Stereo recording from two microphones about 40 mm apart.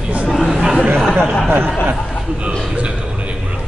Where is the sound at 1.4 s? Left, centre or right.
Right.